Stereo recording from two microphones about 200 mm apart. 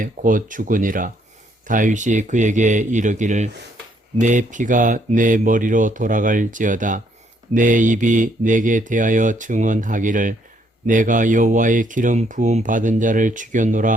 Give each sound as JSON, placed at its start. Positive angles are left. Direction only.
{"t": 0.0, "sound": "speech", "side_deg": -40}